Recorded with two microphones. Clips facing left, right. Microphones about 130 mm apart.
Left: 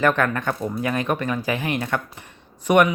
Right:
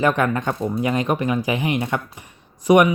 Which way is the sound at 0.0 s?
15° right (ahead or behind).